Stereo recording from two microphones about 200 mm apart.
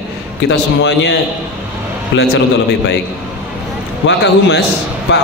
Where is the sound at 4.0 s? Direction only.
60° left (ahead or behind).